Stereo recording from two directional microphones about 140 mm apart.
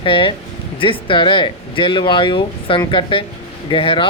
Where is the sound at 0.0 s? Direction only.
40° left (ahead or behind).